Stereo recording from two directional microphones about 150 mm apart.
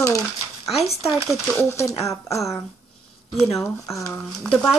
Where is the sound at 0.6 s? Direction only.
Centre (ahead or behind).